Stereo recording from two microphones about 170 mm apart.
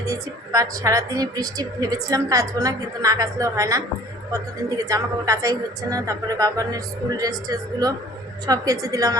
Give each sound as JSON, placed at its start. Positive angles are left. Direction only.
{"t": 0.0, "sound": "a woman's voice", "side_deg": -20}